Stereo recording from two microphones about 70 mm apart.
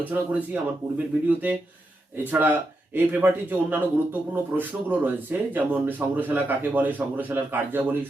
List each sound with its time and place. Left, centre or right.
0.0 s a man's voice: right
2.9 s a man's voice: right